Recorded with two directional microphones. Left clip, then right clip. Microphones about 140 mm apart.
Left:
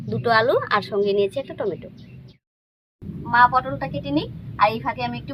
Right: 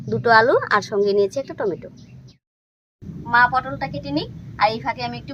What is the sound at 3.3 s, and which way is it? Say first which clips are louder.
A woman's voice: even; 15° right (ahead or behind).